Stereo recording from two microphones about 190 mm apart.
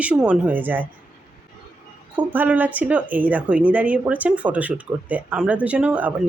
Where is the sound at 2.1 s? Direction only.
10° right (ahead or behind).